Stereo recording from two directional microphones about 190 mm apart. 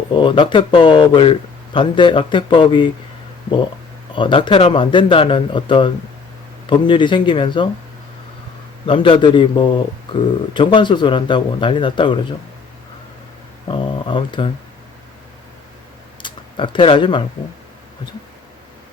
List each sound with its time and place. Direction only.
0.1 s a man's voice: 25° left (ahead or behind)
4.1 s a man's voice: 25° left (ahead or behind)
8.9 s a man's voice: 25° left (ahead or behind)
13.7 s a man's voice: 25° left (ahead or behind)
16.2 s speech: 25° left (ahead or behind)